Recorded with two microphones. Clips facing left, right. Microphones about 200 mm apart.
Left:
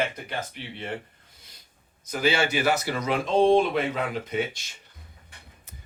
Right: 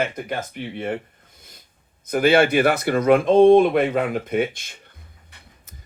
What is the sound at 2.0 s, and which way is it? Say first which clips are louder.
Speech: right 8 dB; 55° right (ahead or behind).